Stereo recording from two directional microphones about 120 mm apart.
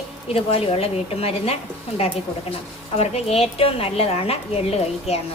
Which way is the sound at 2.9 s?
60° left (ahead or behind).